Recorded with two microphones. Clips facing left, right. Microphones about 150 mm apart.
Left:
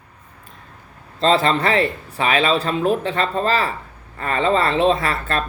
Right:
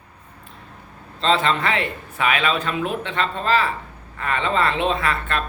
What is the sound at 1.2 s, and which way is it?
Speech, 40° left (ahead or behind).